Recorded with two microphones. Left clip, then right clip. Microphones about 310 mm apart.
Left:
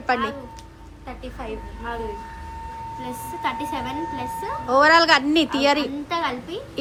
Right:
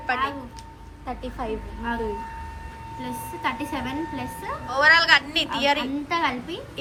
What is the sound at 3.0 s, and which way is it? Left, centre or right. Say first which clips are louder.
A woman's voice: even; centre.